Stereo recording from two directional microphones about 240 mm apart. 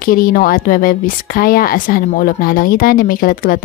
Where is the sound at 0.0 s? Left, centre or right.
Left.